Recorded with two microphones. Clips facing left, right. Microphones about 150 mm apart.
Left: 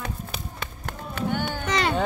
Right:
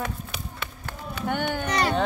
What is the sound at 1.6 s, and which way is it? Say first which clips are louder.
Music: left 2 dB; 90° left.